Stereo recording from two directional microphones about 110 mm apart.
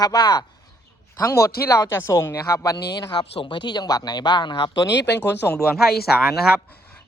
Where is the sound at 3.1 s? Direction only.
50° left (ahead or behind).